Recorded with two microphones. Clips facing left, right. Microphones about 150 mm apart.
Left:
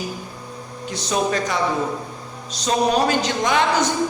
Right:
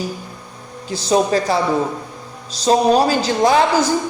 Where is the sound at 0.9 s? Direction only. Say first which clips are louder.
Right 6 dB; 30° right (ahead or behind).